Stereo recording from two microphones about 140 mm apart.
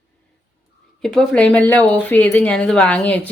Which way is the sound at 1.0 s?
5° left (ahead or behind).